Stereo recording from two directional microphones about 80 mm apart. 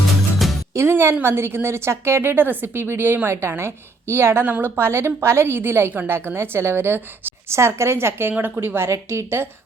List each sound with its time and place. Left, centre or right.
0.7 s a woman's voice: right
6.1 s a woman's voice: right